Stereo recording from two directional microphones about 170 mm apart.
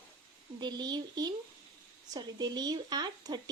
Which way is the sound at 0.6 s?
25° right (ahead or behind).